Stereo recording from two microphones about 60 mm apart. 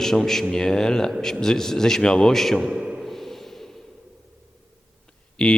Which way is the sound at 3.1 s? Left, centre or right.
Centre.